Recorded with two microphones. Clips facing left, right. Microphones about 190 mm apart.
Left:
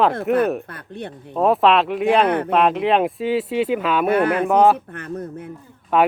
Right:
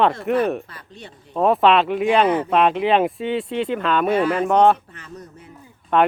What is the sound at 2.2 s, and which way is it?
Speech, 60° left (ahead or behind).